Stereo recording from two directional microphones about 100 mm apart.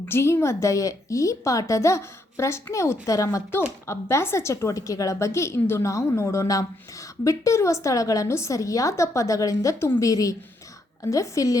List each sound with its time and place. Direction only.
0.0 s a woman's voice: 25° left (ahead or behind)